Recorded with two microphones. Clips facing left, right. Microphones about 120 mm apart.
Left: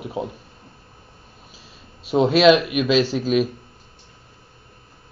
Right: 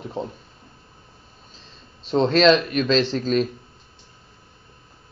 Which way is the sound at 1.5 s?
10° left (ahead or behind).